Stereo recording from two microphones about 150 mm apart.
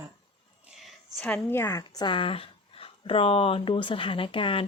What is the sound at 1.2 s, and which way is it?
Speech, 15° left (ahead or behind).